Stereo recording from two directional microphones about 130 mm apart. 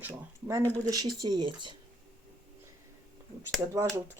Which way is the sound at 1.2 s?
35° right (ahead or behind).